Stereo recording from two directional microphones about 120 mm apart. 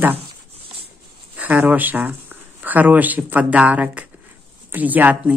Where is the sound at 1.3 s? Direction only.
15° right (ahead or behind).